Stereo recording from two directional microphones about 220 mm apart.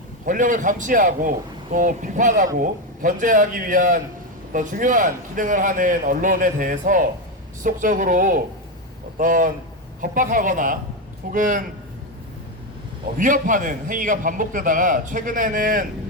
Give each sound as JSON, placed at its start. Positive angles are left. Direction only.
{"t": 0.3, "sound": "a man's voice", "side_deg": -35}
{"t": 13.1, "sound": "a man's voice", "side_deg": -35}